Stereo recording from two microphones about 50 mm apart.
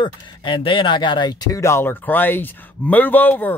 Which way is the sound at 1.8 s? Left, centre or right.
Left.